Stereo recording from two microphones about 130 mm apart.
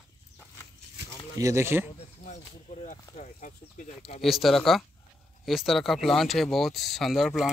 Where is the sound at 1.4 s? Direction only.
25° right (ahead or behind).